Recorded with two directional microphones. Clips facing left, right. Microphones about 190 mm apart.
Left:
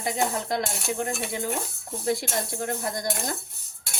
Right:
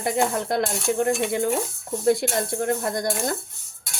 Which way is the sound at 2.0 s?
55° right (ahead or behind).